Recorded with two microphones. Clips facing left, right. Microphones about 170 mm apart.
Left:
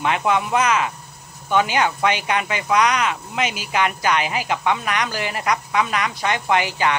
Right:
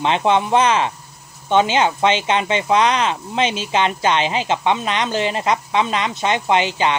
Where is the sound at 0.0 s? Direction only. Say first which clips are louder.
Right 3 dB; 25° right (ahead or behind).